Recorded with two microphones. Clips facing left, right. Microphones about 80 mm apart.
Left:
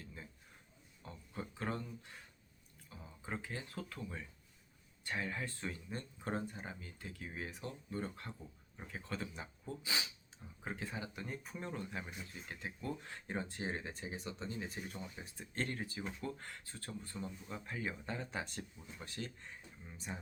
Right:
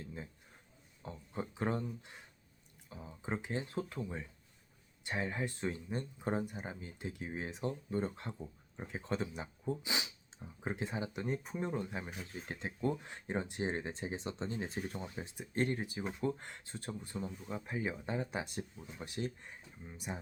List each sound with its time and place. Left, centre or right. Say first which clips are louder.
0.0 s a sound: right 6 dB; right
2.9 s speech: right 5 dB; right
12.1 s speech: right 4 dB; right
12.5 s speech: right 7 dB; right; by 20.1 s centre